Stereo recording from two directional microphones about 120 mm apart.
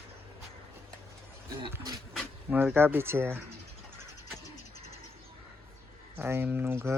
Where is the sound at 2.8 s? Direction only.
20° right (ahead or behind).